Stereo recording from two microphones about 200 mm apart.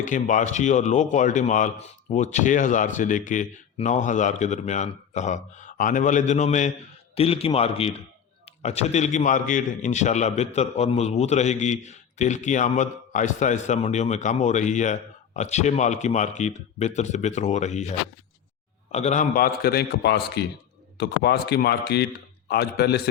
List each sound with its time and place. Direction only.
0.0 s a man's voice: 40° left (ahead or behind)
18.9 s a man's voice: 35° left (ahead or behind); by 23.0 s 55° left (ahead or behind)